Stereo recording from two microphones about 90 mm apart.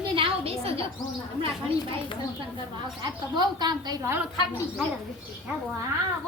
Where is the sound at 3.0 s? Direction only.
55° right (ahead or behind).